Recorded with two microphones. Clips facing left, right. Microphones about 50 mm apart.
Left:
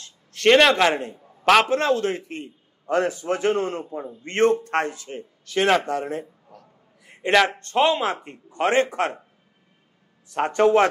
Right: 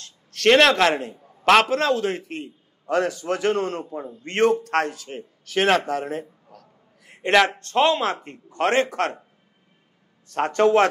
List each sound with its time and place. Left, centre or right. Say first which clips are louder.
0.5 s a man's voice: even; centre
1.2 s a sound: right 1 dB; centre
1.9 s a man's voice: even; centre
2.9 s a man's voice: even; centre
4.6 s a man's voice: right 1 dB; centre
5.1 s a man's voice: right 1 dB; centre
10.3 s a man's voice: even; centre